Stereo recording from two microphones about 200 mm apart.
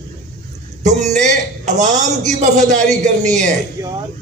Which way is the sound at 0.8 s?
35° right (ahead or behind).